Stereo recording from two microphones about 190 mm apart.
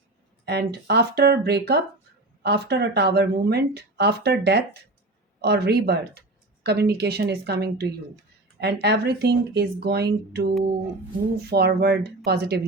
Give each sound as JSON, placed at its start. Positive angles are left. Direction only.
{"t": 0.4, "sound": "speech", "side_deg": -60}